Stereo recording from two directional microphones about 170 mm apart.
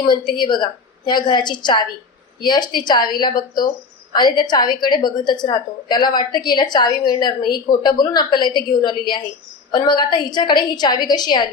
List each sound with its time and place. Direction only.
0.0 s a woman's voice: 25° left (ahead or behind)